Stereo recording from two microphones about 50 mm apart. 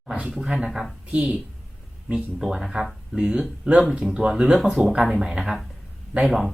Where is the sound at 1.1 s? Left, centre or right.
Right.